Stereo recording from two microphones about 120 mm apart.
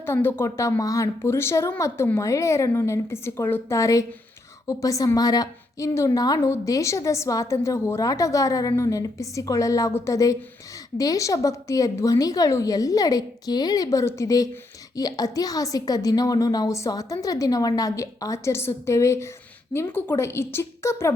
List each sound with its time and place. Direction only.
0.0 s a woman's voice: 20° left (ahead or behind)